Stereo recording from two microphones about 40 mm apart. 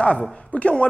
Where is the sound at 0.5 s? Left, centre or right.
Left.